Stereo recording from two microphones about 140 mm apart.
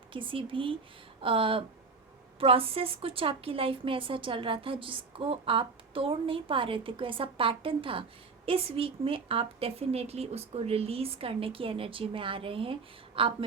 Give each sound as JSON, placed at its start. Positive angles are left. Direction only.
{"t": 0.1, "sound": "a woman's voice", "side_deg": -40}